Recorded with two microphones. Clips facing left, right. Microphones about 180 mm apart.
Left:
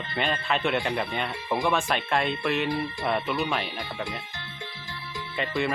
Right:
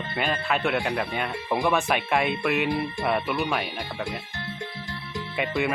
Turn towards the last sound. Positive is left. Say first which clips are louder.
# right 2 dB
turn(degrees=-5)  # may be behind; listen again after turning